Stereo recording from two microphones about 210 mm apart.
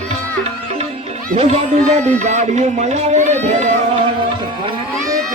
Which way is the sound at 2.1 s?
35° right (ahead or behind).